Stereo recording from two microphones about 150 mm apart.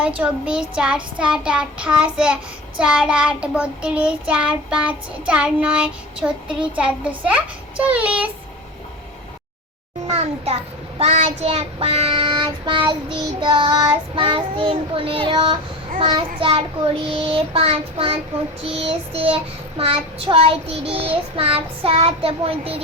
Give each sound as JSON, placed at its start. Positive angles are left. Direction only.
{"t": 0.2, "sound": "child singing", "side_deg": -5}
{"t": 10.1, "sound": "a sound", "side_deg": -45}
{"t": 10.9, "sound": "child singing", "side_deg": -45}